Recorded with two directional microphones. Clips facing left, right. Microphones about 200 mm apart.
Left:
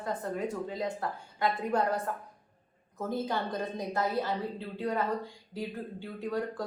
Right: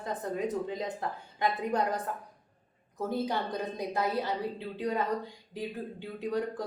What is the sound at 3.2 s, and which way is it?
A woman's voice, 15° right (ahead or behind).